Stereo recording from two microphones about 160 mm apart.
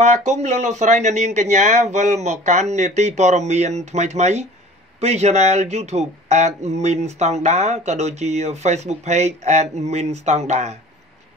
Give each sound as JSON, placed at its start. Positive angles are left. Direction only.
{"t": 0.0, "sound": "speech", "side_deg": -45}